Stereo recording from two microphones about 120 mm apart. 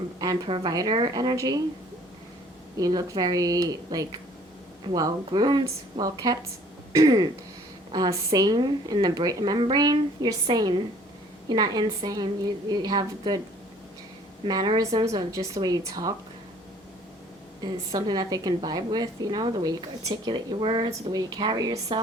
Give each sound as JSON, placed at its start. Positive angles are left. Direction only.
{"t": 0.2, "sound": "a woman's voice", "side_deg": -35}
{"t": 2.7, "sound": "a woman's voice", "side_deg": -30}
{"t": 6.9, "sound": "throat clearing", "side_deg": -30}
{"t": 7.9, "sound": "a woman's voice", "side_deg": -30}
{"t": 14.4, "sound": "a woman's voice", "side_deg": -35}
{"t": 17.6, "sound": "a woman's voice", "side_deg": -35}